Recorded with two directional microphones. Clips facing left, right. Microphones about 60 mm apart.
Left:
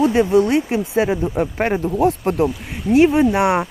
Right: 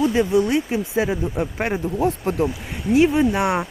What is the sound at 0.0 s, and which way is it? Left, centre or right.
Speech, left.